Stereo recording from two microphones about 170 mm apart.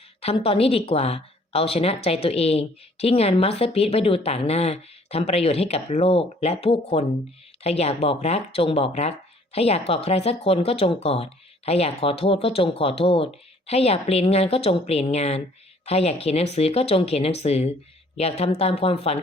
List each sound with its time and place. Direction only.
0.2 s speech: 35° left (ahead or behind)